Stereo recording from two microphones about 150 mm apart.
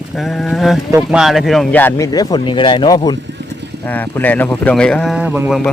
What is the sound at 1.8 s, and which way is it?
Speech, 25° left (ahead or behind).